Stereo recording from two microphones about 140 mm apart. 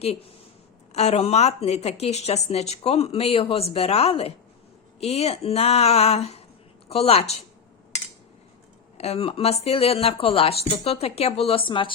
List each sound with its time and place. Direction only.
0.9 s a woman's voice: 50° left (ahead or behind)
9.0 s a woman's voice: 45° left (ahead or behind)